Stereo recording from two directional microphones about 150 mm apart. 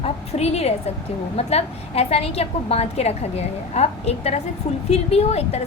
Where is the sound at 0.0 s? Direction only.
45° left (ahead or behind).